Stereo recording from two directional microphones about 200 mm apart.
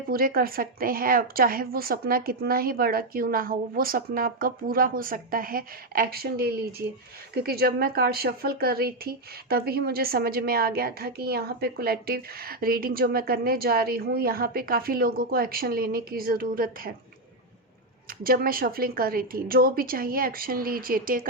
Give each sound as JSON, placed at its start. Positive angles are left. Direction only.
{"t": 0.1, "sound": "a woman's voice", "side_deg": -45}
{"t": 18.2, "sound": "a woman's voice", "side_deg": -45}